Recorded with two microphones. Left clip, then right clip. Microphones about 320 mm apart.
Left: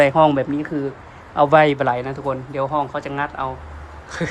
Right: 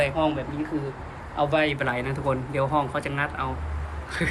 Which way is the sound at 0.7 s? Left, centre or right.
Left.